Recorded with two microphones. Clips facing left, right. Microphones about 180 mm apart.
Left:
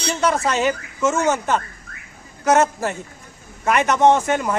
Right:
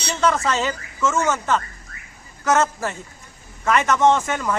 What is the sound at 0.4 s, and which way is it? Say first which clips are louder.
Speech: left 3 dB; 15° left (ahead or behind).